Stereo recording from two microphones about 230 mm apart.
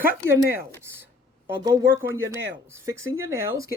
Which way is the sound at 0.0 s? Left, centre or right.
Centre.